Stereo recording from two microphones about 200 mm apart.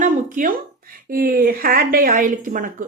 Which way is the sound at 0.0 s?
40° right (ahead or behind).